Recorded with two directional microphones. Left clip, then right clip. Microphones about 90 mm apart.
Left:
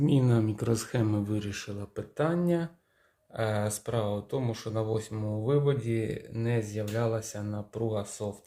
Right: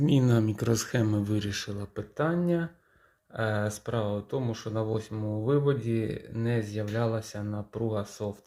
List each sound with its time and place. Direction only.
0.2 s speech: 15° right (ahead or behind); by 1.9 s 35° right (ahead or behind)
2.0 s speech: 10° right (ahead or behind)
5.4 s speech: 20° right (ahead or behind)